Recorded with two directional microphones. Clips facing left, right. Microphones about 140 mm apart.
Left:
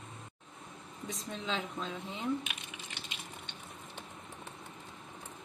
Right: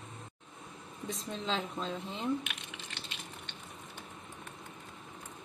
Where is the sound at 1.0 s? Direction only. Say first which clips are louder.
Right 2 dB; 30° right (ahead or behind).